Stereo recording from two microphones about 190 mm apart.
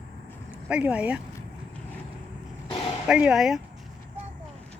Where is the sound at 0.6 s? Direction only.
5° right (ahead or behind).